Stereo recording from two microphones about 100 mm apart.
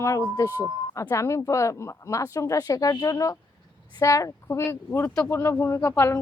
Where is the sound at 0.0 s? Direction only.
30° left (ahead or behind).